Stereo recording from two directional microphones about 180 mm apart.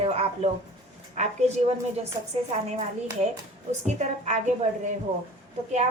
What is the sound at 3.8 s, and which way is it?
A woman's voice, 40° right (ahead or behind).